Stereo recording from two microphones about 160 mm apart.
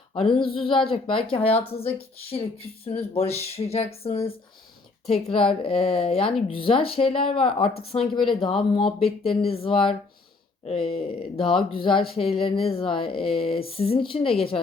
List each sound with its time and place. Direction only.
0.1 s a sound: 35° left (ahead or behind)
0.4 s speech: 35° left (ahead or behind)
5.3 s speech: 35° left (ahead or behind)